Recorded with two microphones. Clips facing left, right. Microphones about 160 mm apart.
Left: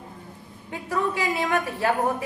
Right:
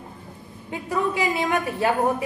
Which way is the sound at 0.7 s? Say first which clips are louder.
Right 2 dB; 15° right (ahead or behind).